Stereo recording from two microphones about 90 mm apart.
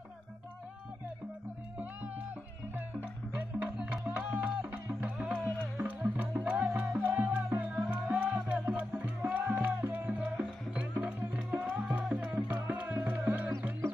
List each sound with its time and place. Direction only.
1.8 s music: 15° right (ahead or behind)
3.3 s music: 10° right (ahead or behind)